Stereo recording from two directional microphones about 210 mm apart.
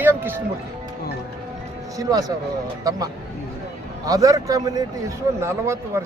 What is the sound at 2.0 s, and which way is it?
Speech, 15° right (ahead or behind).